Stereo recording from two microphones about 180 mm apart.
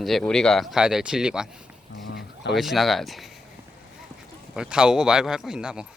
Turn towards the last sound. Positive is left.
turn(degrees=-5)  # may be behind; listen again after turning